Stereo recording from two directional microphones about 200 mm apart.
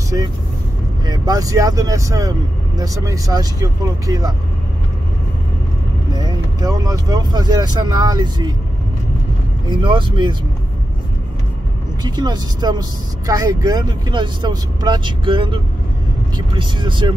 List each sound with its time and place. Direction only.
1.0 s speech: 20° right (ahead or behind)
6.1 s speech: 20° right (ahead or behind)
9.7 s speech: 25° right (ahead or behind)
12.0 s speech: 20° right (ahead or behind)